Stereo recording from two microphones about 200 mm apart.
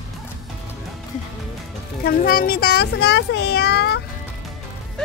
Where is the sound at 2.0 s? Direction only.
50° left (ahead or behind).